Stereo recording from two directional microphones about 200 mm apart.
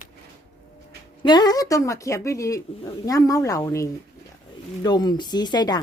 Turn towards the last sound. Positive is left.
turn(degrees=20)  # may be behind; listen again after turning